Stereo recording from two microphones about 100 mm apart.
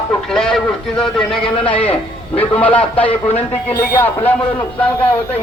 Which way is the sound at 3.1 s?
90° left.